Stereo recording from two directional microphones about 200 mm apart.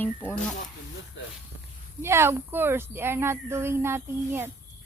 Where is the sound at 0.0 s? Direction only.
10° left (ahead or behind).